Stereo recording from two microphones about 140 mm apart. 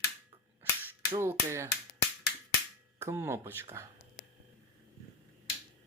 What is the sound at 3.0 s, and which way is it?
Speech, 20° right (ahead or behind).